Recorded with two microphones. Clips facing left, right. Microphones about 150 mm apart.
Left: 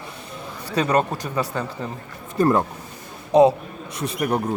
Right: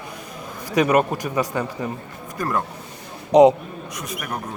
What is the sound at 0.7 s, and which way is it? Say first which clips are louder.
A man's voice: right 3 dB; 15° right (ahead or behind).